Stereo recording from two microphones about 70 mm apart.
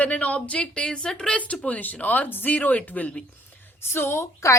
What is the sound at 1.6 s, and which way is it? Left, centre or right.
Speech, left.